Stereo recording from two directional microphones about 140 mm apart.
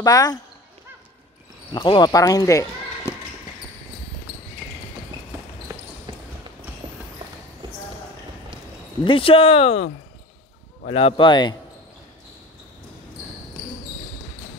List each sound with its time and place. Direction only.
0.0 s speech: 25° left (ahead or behind)
1.7 s speech: 35° left (ahead or behind)
6.8 s clip-clop: 40° right (ahead or behind)
9.0 s speech: 40° left (ahead or behind)
10.9 s speech: 40° left (ahead or behind)